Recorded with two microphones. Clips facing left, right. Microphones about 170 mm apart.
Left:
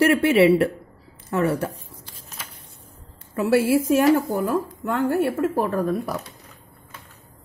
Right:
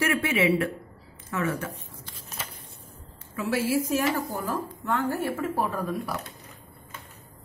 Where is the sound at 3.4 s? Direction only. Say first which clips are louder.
Left 7 dB; 45° left (ahead or behind).